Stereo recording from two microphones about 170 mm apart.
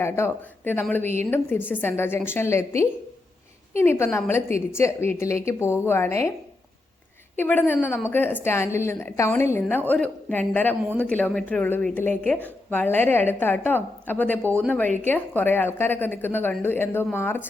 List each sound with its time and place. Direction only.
0.0 s a woman's voice: 15° left (ahead or behind)
7.3 s a woman's voice: 10° left (ahead or behind)